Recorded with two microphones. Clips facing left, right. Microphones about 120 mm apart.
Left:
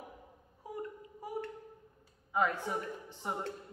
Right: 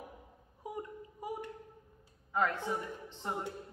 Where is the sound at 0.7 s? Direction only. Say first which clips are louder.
Even; 15° right (ahead or behind).